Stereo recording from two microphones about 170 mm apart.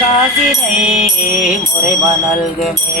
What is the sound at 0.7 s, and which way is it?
Music, 5° right (ahead or behind).